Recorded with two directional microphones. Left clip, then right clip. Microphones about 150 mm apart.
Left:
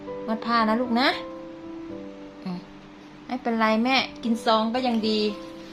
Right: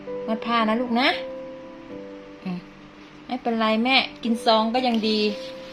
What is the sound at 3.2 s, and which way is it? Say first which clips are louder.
A woman's voice: even; 15° right (ahead or behind).